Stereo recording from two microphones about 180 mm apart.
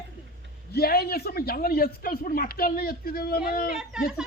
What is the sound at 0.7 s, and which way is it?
Speech, 60° left (ahead or behind).